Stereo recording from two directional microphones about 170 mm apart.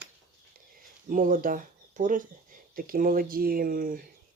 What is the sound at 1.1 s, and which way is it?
Speech, 50° right (ahead or behind).